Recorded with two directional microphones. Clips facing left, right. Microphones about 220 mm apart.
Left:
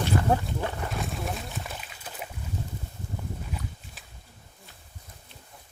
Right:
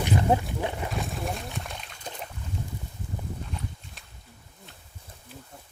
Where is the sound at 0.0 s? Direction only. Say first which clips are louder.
Right 1 dB; 15° right (ahead or behind).